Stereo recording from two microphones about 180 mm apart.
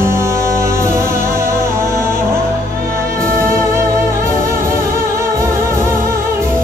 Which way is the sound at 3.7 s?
15° right (ahead or behind).